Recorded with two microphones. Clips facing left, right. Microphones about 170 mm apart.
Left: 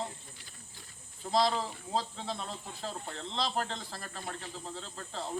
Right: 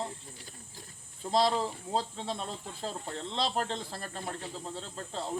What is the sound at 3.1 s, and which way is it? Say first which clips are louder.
Speech: right 3 dB; 40° right (ahead or behind).